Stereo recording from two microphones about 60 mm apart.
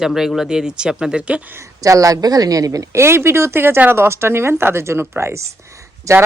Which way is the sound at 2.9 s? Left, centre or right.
Right.